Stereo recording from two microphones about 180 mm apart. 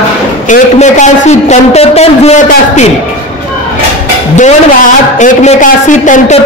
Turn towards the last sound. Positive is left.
turn(degrees=45)  # may be behind; listen again after turning